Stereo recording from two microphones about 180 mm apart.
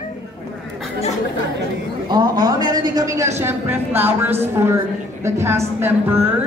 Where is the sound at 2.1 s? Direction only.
20° right (ahead or behind).